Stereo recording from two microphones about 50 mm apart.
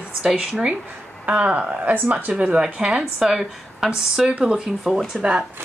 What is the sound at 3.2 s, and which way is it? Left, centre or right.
Speech, centre.